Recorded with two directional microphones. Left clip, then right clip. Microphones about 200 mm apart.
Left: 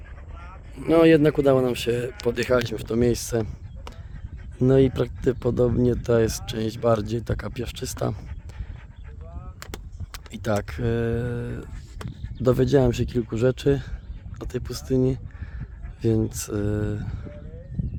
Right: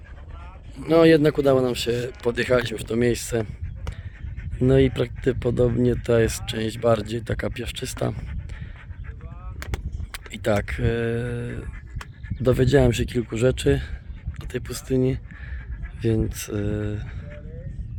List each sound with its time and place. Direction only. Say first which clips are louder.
0.8 s speech: right 1 dB; centre (ahead or behind)
4.6 s speech: even; 5° left (ahead or behind)
10.3 s speech: right 3 dB; centre (ahead or behind)